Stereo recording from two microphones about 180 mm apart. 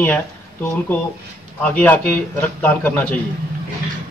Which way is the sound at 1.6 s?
10° left (ahead or behind).